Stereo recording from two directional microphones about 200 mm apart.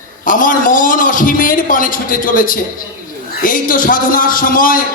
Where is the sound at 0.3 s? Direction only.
40° left (ahead or behind).